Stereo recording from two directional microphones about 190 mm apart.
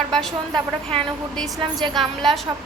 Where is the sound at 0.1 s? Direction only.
Centre (ahead or behind).